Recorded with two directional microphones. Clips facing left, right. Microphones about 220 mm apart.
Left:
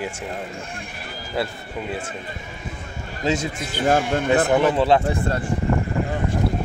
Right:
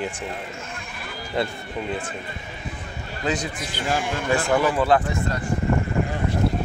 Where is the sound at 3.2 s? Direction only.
25° left (ahead or behind).